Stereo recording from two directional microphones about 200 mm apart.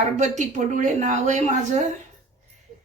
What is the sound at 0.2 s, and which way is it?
Speech, 40° right (ahead or behind).